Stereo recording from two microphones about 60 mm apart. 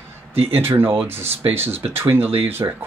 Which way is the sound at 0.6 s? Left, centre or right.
Right.